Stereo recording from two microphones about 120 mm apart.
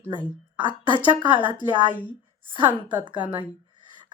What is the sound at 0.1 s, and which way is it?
A woman's voice, 40° right (ahead or behind).